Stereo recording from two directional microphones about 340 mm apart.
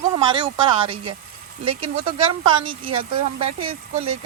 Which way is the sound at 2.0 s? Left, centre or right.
Centre.